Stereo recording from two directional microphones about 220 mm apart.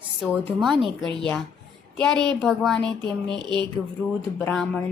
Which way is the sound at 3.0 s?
50° left (ahead or behind).